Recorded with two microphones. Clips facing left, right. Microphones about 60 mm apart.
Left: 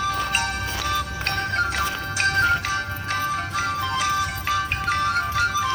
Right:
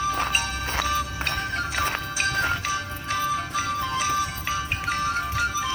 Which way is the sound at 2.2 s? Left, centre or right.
Left.